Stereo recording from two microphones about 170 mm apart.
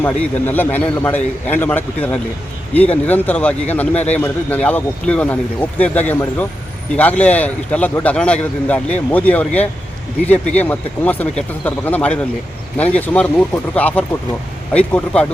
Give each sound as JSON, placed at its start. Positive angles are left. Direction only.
{"t": 0.0, "sound": "speech", "side_deg": 10}